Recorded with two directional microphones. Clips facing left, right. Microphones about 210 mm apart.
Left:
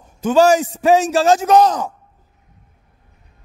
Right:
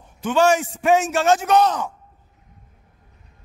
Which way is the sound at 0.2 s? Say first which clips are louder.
Left 5 dB; 40° left (ahead or behind).